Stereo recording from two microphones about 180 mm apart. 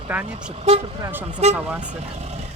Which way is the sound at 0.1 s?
10° right (ahead or behind).